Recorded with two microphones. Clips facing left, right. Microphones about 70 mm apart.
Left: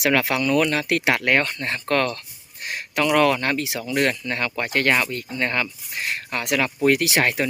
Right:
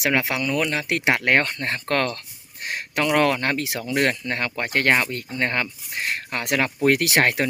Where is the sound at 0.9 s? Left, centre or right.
Right.